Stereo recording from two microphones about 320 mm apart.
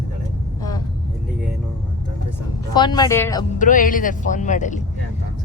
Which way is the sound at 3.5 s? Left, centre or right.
Left.